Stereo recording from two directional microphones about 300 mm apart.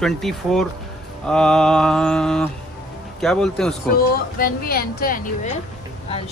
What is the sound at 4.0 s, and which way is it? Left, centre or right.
Speech, left.